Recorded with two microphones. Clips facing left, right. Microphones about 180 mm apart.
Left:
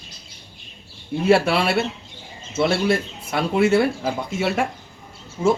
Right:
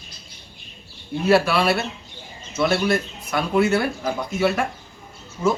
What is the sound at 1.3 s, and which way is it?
Speech, 25° left (ahead or behind).